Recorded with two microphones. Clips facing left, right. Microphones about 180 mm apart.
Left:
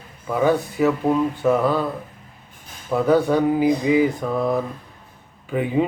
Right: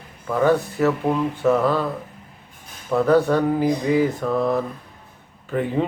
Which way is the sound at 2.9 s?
Centre (ahead or behind).